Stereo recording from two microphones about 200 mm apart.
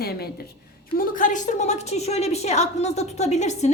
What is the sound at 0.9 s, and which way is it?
A woman's voice, 40° left (ahead or behind).